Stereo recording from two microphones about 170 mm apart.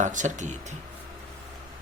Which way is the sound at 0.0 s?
45° right (ahead or behind).